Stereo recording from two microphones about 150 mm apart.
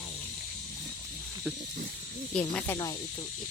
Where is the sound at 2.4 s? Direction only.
10° left (ahead or behind).